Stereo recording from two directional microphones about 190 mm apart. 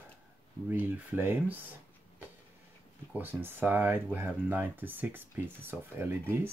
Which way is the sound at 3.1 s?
10° right (ahead or behind).